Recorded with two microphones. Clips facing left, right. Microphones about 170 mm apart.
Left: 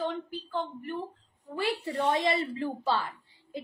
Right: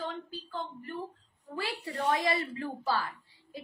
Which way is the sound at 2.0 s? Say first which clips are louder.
Left 2 dB; 25° left (ahead or behind).